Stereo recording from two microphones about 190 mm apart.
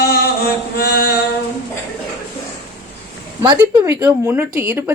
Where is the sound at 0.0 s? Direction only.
55° left (ahead or behind).